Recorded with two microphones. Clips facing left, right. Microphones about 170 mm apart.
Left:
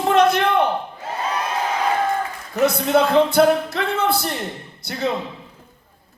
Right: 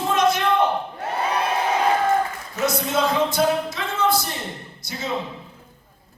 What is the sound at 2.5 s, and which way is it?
A man's voice, 60° left (ahead or behind).